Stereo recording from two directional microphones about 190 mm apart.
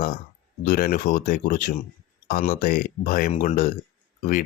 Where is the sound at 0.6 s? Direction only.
50° left (ahead or behind).